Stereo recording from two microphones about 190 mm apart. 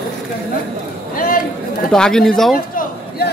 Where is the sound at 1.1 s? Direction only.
50° left (ahead or behind).